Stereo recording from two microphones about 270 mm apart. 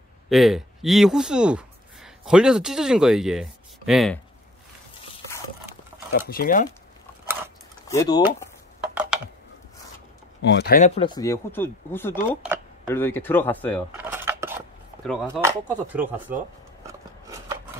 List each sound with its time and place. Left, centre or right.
0.3 s speech: centre
6.1 s speech: left
7.2 s a sound: centre
7.9 s speech: centre
8.8 s a sound: centre
10.4 s speech: left
11.0 s speech: centre
13.9 s cutlery: centre
15.2 s speech: centre
16.8 s a sound: centre